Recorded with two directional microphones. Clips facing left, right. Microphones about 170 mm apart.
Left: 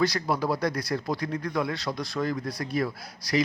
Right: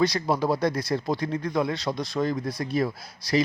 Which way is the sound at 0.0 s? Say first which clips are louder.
Right 2 dB; 20° right (ahead or behind).